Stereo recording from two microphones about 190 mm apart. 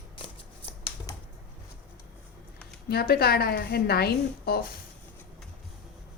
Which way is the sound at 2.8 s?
55° left (ahead or behind).